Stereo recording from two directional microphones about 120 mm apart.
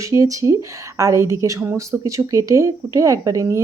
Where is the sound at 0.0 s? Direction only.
25° right (ahead or behind).